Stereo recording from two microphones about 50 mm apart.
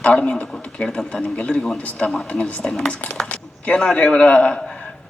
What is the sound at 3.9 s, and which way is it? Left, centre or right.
Speech, left.